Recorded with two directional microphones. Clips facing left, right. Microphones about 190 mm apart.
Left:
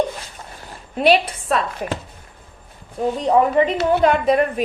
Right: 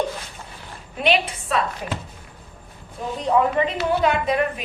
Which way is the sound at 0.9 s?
40° left (ahead or behind).